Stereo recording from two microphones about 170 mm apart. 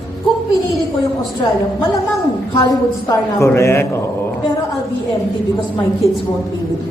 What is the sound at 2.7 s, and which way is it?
A man's voice, 20° left (ahead or behind).